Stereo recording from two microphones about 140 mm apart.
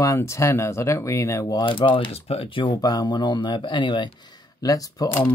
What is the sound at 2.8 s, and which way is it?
Speech, 30° left (ahead or behind).